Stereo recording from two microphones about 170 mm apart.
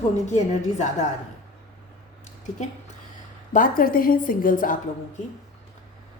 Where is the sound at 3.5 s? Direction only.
55° left (ahead or behind).